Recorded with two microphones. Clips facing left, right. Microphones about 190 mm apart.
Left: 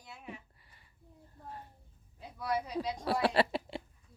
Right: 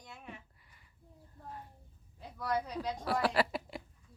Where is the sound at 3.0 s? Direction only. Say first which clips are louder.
Left 2 dB; 25° left (ahead or behind).